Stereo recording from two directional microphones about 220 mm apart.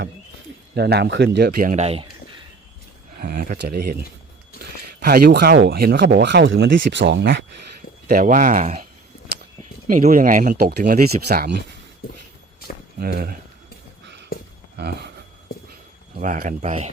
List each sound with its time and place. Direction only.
0.7 s speech: 45° right (ahead or behind); by 2.0 s 30° right (ahead or behind)
3.2 s speech: 40° right (ahead or behind)
8.0 s speech: 40° right (ahead or behind)
13.0 s speech: 45° right (ahead or behind)
14.8 s speech: 45° right (ahead or behind)
16.2 s speech: 35° right (ahead or behind)